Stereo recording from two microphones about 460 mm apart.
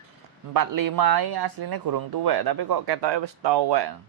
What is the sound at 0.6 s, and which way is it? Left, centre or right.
Speech, right.